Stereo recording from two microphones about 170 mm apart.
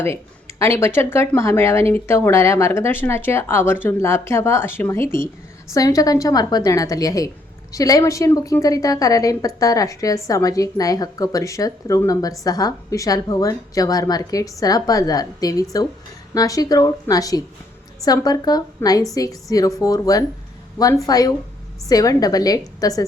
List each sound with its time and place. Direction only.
0.6 s a woman's voice: 15° left (ahead or behind)